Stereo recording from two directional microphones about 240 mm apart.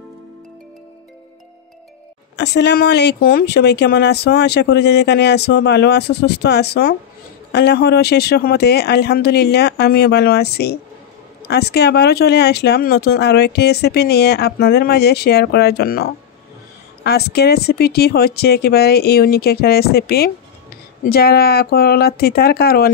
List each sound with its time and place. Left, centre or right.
2.3 s speech: left